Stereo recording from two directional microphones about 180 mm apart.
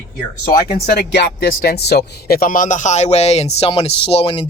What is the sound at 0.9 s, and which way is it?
Speech, 65° left (ahead or behind).